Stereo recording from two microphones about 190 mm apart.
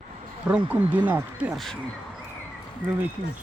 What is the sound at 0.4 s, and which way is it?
Speech, 5° right (ahead or behind).